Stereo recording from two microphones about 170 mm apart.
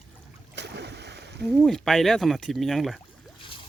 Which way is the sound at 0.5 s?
80° right.